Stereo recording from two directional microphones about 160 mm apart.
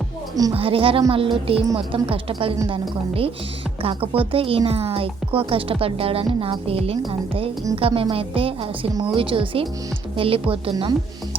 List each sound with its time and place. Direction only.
0.5 s speech: 35° right (ahead or behind)